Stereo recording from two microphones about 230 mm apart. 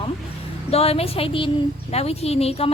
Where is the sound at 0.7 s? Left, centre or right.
Left.